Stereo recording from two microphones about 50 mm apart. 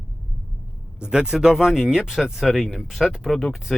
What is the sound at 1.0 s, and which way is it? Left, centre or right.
A man's voice, centre.